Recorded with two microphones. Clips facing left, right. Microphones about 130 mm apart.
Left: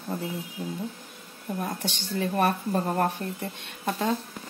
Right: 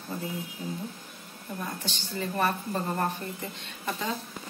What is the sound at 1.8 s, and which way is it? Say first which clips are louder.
Speech: left 5 dB; 70° left (ahead or behind).